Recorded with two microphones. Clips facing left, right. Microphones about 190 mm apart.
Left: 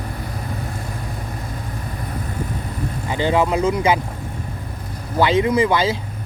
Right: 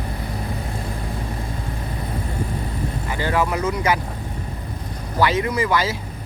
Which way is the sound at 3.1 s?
20° left (ahead or behind).